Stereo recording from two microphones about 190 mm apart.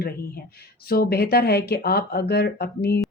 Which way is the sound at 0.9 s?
55° left (ahead or behind).